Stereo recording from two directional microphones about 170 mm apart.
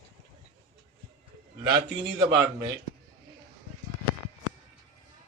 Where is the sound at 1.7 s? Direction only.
25° right (ahead or behind).